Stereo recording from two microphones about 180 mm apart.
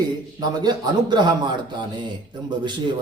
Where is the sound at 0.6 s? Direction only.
25° right (ahead or behind).